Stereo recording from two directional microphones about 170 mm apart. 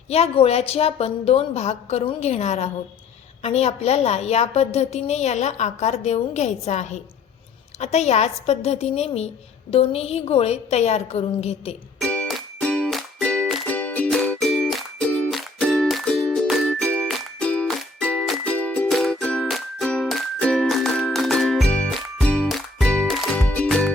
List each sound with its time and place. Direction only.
0.1 s a woman's voice: 35° left (ahead or behind)
11.9 s music: 5° left (ahead or behind)